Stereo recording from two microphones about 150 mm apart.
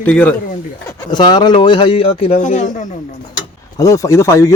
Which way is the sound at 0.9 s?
30° left (ahead or behind).